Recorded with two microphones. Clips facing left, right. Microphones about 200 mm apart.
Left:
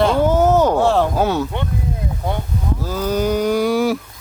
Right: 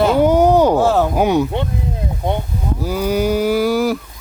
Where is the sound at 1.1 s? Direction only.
15° right (ahead or behind).